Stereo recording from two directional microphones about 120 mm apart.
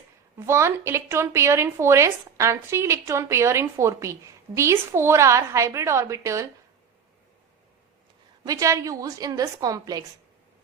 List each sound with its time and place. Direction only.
0.3 s a woman's voice: 20° right (ahead or behind)
8.4 s a woman's voice: 25° right (ahead or behind)